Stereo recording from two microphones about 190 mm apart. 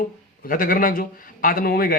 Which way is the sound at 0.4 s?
45° left (ahead or behind).